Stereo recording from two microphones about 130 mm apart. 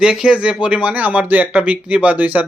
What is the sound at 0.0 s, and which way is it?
Speech, 5° right (ahead or behind).